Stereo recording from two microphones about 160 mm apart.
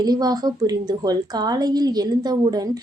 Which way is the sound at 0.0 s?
25° right (ahead or behind).